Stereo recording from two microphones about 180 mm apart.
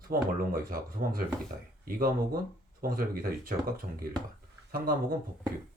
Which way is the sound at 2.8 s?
55° right (ahead or behind).